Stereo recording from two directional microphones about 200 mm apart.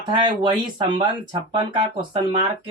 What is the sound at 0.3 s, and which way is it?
Speech, 20° right (ahead or behind).